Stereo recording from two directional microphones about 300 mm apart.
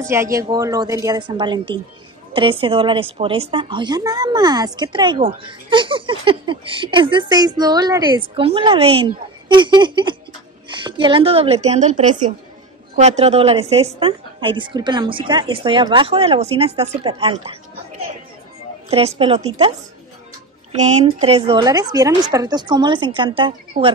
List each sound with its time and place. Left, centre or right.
0.1 s a woman's voice: centre
18.9 s speech: centre
20.7 s a woman's voice: right